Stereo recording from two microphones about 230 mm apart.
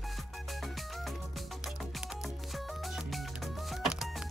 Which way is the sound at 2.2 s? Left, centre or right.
Centre.